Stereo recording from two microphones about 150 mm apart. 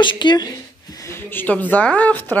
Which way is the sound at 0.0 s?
30° left (ahead or behind).